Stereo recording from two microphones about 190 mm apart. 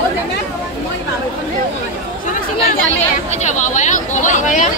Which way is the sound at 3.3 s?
40° left (ahead or behind).